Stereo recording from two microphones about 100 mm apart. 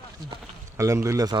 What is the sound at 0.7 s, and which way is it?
Speech, 30° right (ahead or behind).